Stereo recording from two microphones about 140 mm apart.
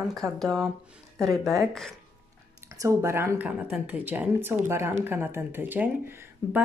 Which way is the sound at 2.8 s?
20° right (ahead or behind).